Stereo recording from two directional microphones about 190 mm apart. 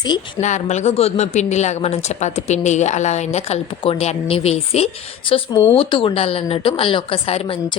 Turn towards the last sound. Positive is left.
turn(degrees=30)  # may be behind; listen again after turning